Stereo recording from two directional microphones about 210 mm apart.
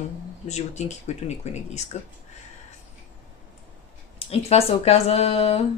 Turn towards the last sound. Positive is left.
turn(degrees=30)  # may be behind; listen again after turning